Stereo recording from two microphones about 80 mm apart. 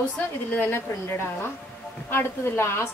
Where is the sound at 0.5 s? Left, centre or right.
Left.